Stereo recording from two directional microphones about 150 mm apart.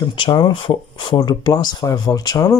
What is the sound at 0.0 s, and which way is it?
Speech, 30° left (ahead or behind).